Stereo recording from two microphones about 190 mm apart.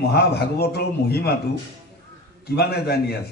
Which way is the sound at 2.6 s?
60° left (ahead or behind).